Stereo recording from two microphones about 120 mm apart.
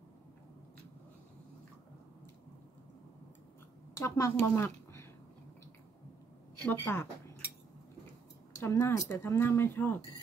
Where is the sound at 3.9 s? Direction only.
25° left (ahead or behind).